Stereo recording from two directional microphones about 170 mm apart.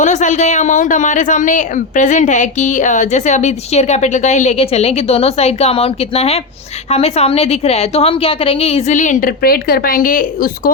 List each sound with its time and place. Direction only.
0.0 s a woman's voice: 45° left (ahead or behind)